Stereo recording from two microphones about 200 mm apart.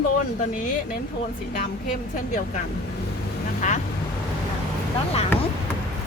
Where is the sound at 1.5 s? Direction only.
40° left (ahead or behind).